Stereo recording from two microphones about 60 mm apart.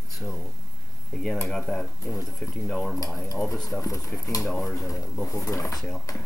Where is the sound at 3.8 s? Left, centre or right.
Left.